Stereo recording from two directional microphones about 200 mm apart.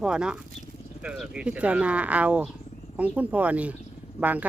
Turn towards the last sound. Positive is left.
turn(degrees=-5)  # may be behind; listen again after turning